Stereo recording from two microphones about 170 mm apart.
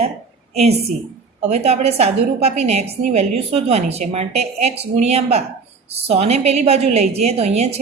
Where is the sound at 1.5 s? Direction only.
40° right (ahead or behind).